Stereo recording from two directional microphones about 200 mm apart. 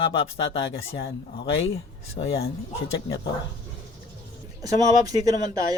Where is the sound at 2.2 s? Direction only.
50° left (ahead or behind).